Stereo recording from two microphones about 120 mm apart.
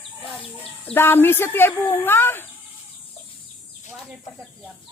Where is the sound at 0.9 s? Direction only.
20° left (ahead or behind).